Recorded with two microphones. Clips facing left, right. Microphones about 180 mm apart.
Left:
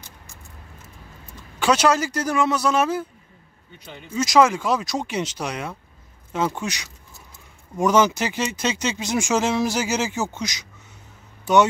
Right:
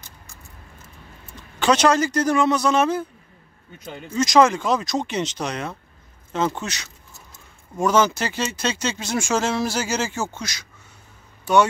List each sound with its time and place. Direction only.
1.6 s speech: 5° left (ahead or behind)
4.1 s speech: 5° left (ahead or behind)